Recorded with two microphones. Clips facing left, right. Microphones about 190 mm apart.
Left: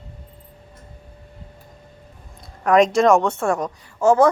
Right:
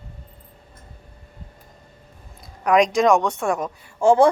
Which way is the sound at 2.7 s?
Centre (ahead or behind).